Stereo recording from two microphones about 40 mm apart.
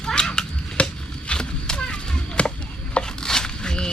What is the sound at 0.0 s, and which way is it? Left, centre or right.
Cat, centre.